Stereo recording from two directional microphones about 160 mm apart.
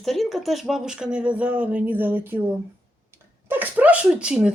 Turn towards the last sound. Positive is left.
turn(degrees=-5)  # may be behind; listen again after turning